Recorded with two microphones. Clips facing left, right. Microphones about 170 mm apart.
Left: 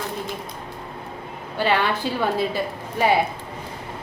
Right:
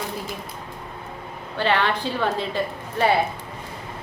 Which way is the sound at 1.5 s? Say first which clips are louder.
Left 1 dB; 10° left (ahead or behind).